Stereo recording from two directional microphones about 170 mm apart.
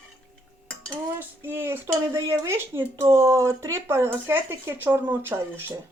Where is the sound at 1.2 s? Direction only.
15° right (ahead or behind).